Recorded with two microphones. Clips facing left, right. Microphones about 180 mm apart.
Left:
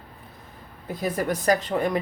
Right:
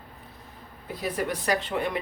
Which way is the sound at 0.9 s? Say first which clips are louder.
Left 3 dB; 45° left (ahead or behind).